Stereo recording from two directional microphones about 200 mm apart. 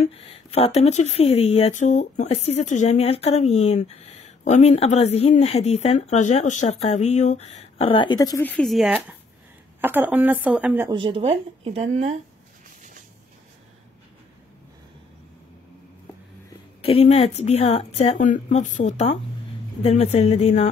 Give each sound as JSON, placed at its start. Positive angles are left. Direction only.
{"t": 0.0, "sound": "a woman's voice", "side_deg": 30}
{"t": 10.9, "sound": "speech", "side_deg": -25}
{"t": 16.8, "sound": "speech", "side_deg": 30}